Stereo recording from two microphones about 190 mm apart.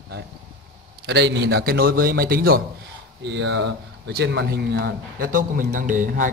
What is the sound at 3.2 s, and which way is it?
Speech, 65° right (ahead or behind).